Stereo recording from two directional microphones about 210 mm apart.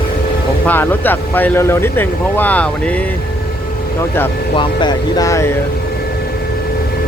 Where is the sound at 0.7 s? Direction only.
10° left (ahead or behind).